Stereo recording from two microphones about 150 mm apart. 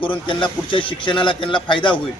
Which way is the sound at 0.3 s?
35° left (ahead or behind).